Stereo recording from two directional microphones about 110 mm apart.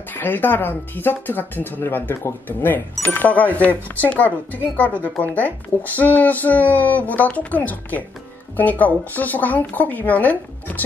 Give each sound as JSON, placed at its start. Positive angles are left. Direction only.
{"t": 0.1, "sound": "speech", "side_deg": 15}